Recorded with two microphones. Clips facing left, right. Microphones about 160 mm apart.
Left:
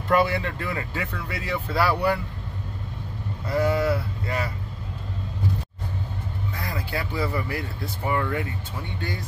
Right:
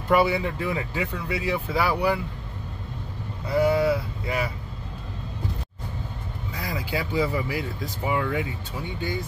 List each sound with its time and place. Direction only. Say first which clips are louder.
0.1 s speech: right 1 dB; 10° right (ahead or behind)
3.5 s vehicle: right 2 dB; 5° right (ahead or behind)
6.6 s speech: right 3 dB; 15° right (ahead or behind)